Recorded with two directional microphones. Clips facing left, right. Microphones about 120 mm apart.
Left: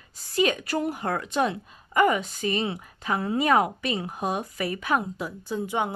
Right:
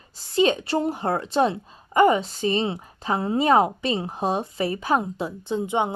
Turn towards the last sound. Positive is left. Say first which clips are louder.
# right 4 dB
turn(degrees=-20)  # may be behind; listen again after turning